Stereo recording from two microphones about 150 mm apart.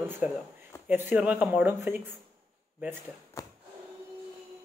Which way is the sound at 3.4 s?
20° left (ahead or behind).